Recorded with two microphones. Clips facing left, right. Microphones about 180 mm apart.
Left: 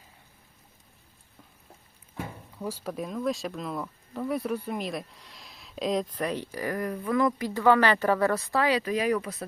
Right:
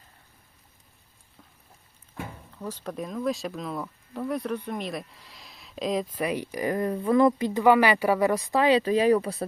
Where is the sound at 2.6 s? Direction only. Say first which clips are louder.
Left 1 dB; 10° left (ahead or behind).